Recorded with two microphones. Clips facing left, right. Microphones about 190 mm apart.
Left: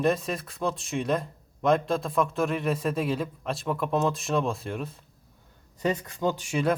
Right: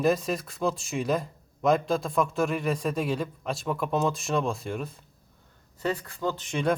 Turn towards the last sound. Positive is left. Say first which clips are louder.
# left 1 dB
turn(degrees=5)  # may be behind; listen again after turning